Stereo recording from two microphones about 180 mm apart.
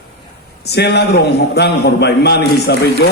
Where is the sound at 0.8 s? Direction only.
65° left (ahead or behind).